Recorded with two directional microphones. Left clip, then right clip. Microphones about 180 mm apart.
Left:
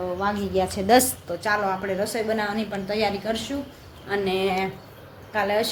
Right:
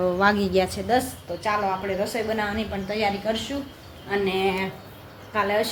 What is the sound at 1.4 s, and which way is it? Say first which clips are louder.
A woman's voice: even; 20° left (ahead or behind).